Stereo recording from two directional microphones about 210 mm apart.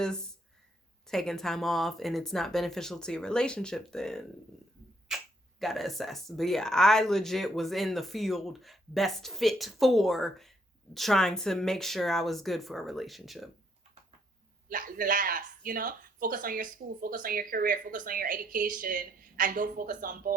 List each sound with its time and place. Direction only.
1.0 s speech: centre (ahead or behind)
14.7 s speech: 40° right (ahead or behind)